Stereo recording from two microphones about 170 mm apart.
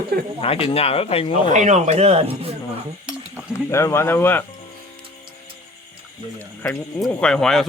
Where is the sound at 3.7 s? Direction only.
15° left (ahead or behind).